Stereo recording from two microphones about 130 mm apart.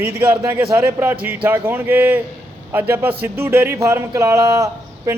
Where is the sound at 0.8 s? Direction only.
15° right (ahead or behind).